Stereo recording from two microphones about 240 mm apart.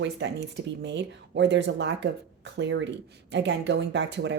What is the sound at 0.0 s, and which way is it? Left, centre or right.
A woman's voice, right.